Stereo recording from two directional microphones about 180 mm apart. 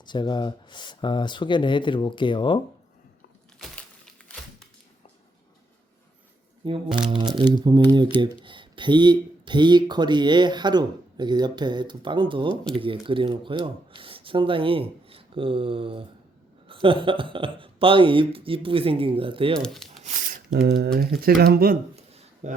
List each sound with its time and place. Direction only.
0.0 s speech: 25° left (ahead or behind)
6.9 s speech: 25° right (ahead or behind)
19.6 s speech: centre (ahead or behind)
20.0 s shuffling cards: 50° right (ahead or behind)
21.2 s speech: 55° right (ahead or behind)
21.9 s a sound: 35° right (ahead or behind)